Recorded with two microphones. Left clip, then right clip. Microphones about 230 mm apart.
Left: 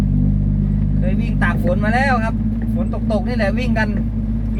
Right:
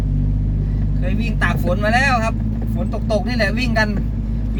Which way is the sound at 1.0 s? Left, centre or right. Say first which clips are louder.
Right 1 dB; centre.